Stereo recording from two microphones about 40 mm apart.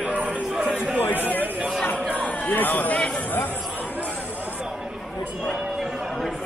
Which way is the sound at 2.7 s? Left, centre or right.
Left.